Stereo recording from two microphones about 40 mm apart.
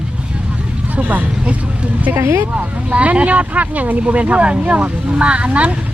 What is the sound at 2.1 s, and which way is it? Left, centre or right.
Speech, right.